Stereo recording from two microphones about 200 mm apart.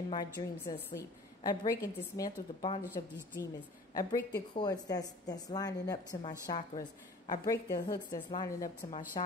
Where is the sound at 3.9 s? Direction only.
20° left (ahead or behind).